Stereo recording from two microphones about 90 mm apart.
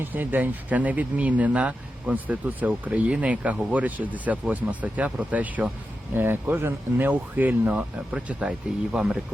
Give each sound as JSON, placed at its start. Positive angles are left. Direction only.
{"t": 0.0, "sound": "speech", "side_deg": -20}